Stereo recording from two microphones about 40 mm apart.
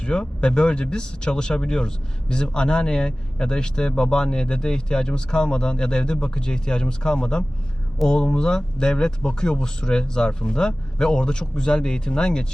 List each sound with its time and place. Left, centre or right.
0.0 s speech: left